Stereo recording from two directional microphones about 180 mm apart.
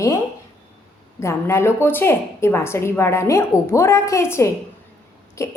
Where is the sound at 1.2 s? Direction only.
15° left (ahead or behind).